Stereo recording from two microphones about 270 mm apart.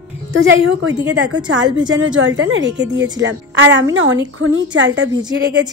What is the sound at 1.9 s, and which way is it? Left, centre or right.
A woman's voice, right.